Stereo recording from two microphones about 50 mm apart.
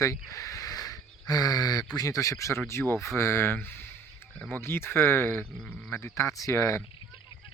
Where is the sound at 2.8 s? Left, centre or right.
Left.